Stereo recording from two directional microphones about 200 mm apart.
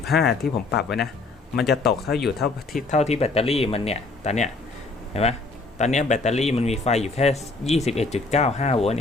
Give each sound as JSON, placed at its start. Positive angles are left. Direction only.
{"t": 0.2, "sound": "speech", "side_deg": 55}
{"t": 2.7, "sound": "a man's voice", "side_deg": 35}